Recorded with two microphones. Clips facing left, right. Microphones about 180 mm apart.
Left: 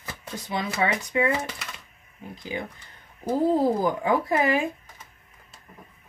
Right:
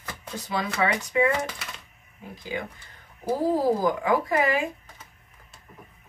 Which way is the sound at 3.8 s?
25° left (ahead or behind).